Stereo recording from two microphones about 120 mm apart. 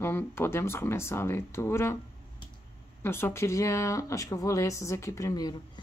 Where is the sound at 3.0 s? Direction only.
20° left (ahead or behind).